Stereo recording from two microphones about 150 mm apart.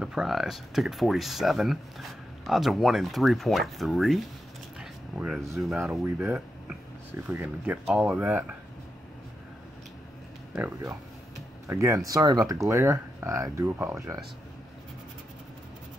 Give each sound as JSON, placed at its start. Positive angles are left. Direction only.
{"t": 0.0, "sound": "speech", "side_deg": -5}
{"t": 4.7, "sound": "a sound", "side_deg": -5}
{"t": 5.8, "sound": "speech", "side_deg": -15}
{"t": 11.6, "sound": "speech", "side_deg": -20}